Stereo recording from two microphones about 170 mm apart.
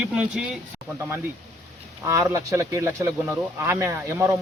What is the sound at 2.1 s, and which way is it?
Speech, 15° right (ahead or behind).